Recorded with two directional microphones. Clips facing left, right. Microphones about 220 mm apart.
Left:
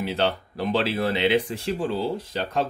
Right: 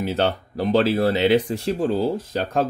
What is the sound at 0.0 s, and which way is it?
Speech, 45° right (ahead or behind).